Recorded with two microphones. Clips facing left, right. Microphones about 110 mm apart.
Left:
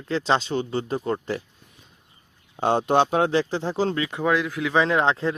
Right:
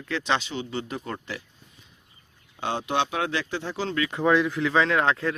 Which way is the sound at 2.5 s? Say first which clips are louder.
Left 7 dB; 45° left (ahead or behind).